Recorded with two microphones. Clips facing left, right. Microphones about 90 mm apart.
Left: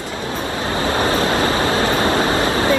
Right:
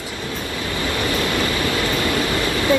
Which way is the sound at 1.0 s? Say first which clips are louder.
Left 4 dB; 35° left (ahead or behind).